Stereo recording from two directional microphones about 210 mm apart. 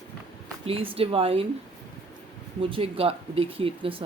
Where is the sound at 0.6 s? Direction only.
25° right (ahead or behind).